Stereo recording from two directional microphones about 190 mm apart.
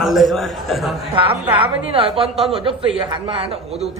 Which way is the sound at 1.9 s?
30° right (ahead or behind).